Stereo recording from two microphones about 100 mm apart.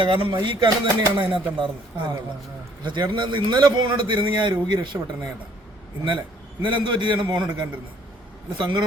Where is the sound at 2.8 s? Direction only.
50° right (ahead or behind).